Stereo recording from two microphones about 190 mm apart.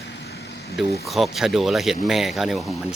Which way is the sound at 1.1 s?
Centre (ahead or behind).